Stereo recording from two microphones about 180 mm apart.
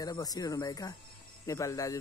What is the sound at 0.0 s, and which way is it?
Speech, 20° left (ahead or behind).